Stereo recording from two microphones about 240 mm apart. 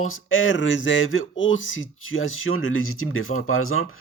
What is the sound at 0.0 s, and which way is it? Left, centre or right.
Speech, left.